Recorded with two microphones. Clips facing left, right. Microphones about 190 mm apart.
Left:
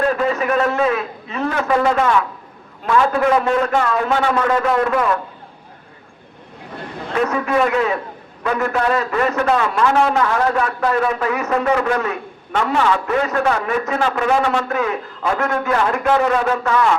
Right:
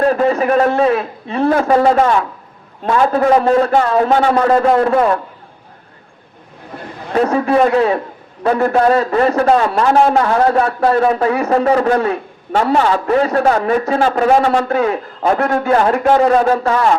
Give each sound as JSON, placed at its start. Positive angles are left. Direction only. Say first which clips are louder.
{"t": 0.0, "sound": "a man's voice", "louder": "right 5 dB", "side_deg": -35}
{"t": 7.1, "sound": "a man's voice", "louder": "right 5 dB", "side_deg": -35}